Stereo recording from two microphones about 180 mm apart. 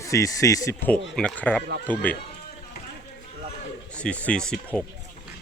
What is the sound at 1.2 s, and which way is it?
Speech, 5° left (ahead or behind).